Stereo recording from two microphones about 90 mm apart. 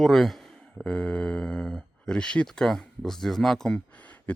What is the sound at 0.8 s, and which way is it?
Speech, 15° left (ahead or behind).